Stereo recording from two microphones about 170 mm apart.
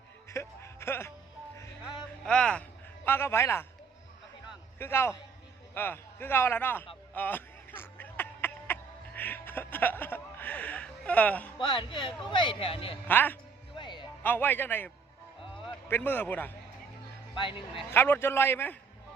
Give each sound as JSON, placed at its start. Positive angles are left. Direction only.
{"t": 0.3, "sound": "music", "side_deg": 15}
{"t": 1.9, "sound": "a man's voice", "side_deg": 5}
{"t": 4.8, "sound": "a man's voice", "side_deg": 15}
{"t": 7.1, "sound": "a sound", "side_deg": 10}
{"t": 11.5, "sound": "speech", "side_deg": 25}
{"t": 13.1, "sound": "a man's voice", "side_deg": 10}
{"t": 13.7, "sound": "music", "side_deg": 25}
{"t": 14.2, "sound": "a man's voice", "side_deg": 10}
{"t": 17.3, "sound": "speech", "side_deg": 30}
{"t": 17.9, "sound": "a man's voice", "side_deg": 10}